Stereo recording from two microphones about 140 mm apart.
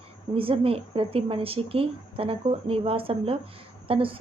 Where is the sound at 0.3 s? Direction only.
40° right (ahead or behind).